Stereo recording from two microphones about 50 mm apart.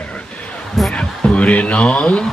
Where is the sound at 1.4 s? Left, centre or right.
Left.